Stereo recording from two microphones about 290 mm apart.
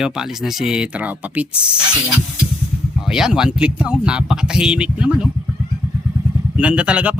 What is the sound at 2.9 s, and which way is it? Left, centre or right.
Speech, centre.